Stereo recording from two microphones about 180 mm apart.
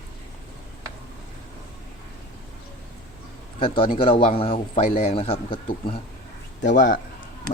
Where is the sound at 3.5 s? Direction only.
30° left (ahead or behind).